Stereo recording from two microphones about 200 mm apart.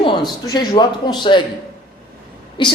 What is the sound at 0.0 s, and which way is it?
Speech, 20° left (ahead or behind).